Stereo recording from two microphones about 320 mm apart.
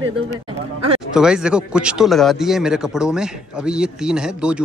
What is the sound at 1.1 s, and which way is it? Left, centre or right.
A man's voice, centre.